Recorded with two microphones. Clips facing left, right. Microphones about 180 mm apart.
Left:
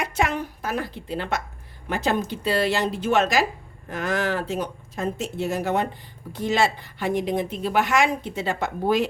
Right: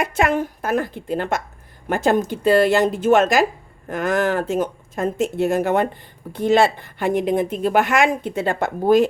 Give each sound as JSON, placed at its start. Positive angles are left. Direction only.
{"t": 0.0, "sound": "speech", "side_deg": -55}